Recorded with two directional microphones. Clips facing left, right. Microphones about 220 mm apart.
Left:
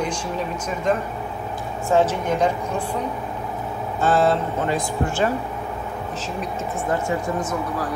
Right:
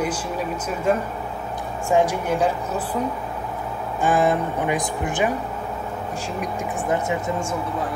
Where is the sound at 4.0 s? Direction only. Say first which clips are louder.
Left 1 dB; 15° right (ahead or behind).